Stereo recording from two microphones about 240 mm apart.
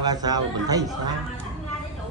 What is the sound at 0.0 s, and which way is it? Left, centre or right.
Speech, centre.